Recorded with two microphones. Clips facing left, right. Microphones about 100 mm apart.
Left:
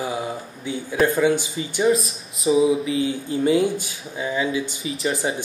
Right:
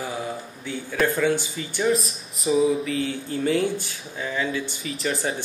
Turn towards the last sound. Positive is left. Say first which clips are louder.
# left 3 dB
turn(degrees=0)  # may be behind; listen again after turning